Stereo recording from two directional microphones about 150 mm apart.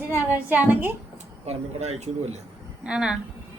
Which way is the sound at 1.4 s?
45° right (ahead or behind).